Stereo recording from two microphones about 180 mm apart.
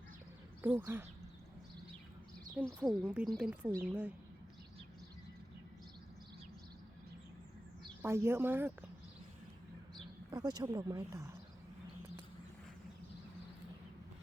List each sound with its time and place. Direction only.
0.6 s speech: 10° right (ahead or behind)
2.6 s speech: centre (ahead or behind)
8.0 s speech: 15° right (ahead or behind)
10.3 s speech: 20° right (ahead or behind)